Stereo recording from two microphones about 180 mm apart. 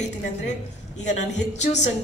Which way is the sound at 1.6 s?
40° left (ahead or behind).